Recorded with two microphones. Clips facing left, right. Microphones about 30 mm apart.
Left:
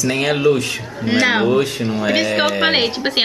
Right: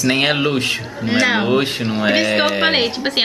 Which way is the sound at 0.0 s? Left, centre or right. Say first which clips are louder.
Even; right.